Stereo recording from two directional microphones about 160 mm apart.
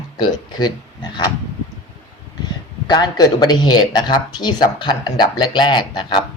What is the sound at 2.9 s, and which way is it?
Speech, 25° left (ahead or behind).